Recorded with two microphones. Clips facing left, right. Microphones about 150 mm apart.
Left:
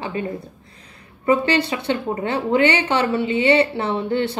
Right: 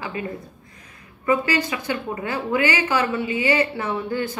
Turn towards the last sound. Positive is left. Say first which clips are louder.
# left 4 dB
turn(degrees=30)  # may be behind; listen again after turning